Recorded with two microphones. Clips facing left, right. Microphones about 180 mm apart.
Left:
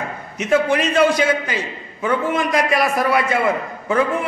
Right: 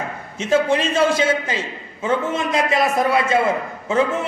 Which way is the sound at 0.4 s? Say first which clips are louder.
Left 1 dB; 25° right (ahead or behind).